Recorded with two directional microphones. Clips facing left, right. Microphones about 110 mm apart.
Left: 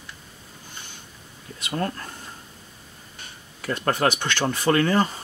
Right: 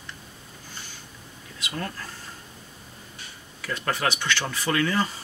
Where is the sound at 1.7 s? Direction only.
35° left (ahead or behind).